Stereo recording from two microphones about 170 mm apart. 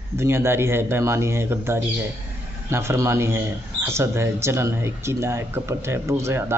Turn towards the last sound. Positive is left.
turn(degrees=-15)  # may be behind; listen again after turning